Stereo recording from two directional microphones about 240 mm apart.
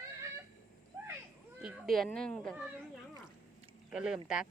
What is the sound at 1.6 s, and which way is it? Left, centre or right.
Speech, centre.